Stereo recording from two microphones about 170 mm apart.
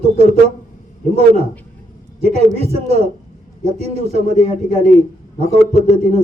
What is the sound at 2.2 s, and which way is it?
A man's voice, 35° right (ahead or behind).